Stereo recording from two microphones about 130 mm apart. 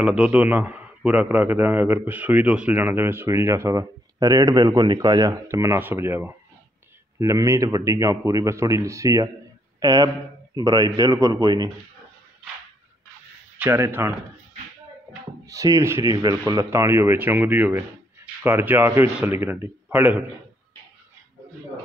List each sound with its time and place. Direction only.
0.0 s a man's voice: 10° right (ahead or behind); by 11.7 s 30° right (ahead or behind)
13.6 s a man's voice: 20° right (ahead or behind)
15.4 s a man's voice: 25° right (ahead or behind)